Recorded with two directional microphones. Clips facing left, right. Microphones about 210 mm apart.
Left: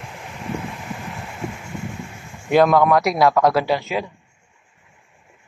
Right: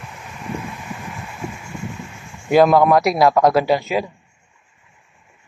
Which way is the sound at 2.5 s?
5° right (ahead or behind).